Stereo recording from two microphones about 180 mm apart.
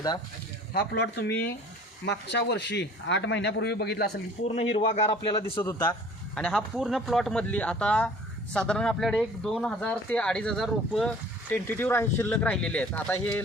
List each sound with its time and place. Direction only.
0.7 s speech: 65° left (ahead or behind)
4.4 s a man's voice: 30° left (ahead or behind)
6.3 s speech: 5° left (ahead or behind)